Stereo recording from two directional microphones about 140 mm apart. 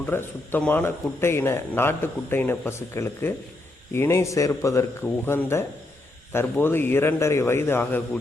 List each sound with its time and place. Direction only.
0.0 s speech: 15° left (ahead or behind)